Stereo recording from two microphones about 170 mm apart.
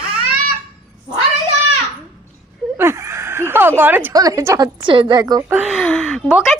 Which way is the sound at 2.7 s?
15° right (ahead or behind).